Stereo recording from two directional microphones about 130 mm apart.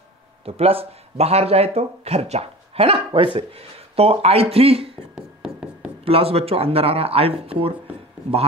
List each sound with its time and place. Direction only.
0.5 s speech: 50° right (ahead or behind)
5.1 s a sound: 10° right (ahead or behind)
6.0 s speech: 50° right (ahead or behind)